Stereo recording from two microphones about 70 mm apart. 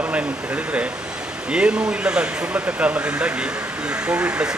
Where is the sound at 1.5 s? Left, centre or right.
Centre.